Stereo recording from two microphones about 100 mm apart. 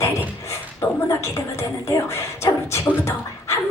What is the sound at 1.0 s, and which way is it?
Music, 30° left (ahead or behind).